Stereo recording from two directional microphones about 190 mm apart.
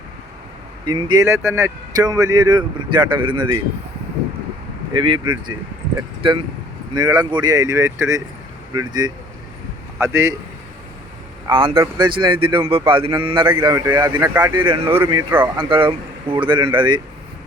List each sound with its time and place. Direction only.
0.9 s speech: 25° right (ahead or behind)
4.9 s speech: 25° right (ahead or behind)
6.2 s speech: 30° right (ahead or behind)
11.4 s speech: 25° right (ahead or behind)
14.9 s speech: 10° right (ahead or behind)
15.5 s speech: 25° right (ahead or behind)